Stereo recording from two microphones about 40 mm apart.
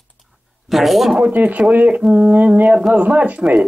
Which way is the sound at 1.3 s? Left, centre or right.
Right.